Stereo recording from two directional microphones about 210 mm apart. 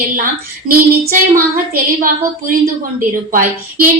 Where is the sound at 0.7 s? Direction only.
45° right (ahead or behind).